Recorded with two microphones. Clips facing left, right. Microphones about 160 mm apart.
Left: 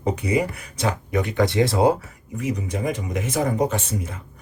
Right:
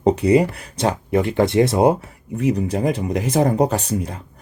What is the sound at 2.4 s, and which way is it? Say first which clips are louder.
Speech: right 6 dB; 35° right (ahead or behind).